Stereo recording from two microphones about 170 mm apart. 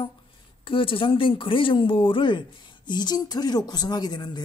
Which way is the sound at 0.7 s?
30° left (ahead or behind).